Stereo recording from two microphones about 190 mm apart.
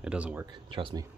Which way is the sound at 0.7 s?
25° right (ahead or behind).